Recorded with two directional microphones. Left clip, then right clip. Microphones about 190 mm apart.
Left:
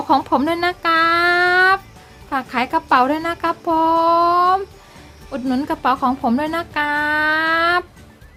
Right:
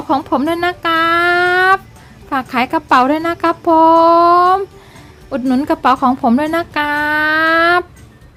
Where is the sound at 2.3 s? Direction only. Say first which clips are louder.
Right 4 dB; 15° right (ahead or behind).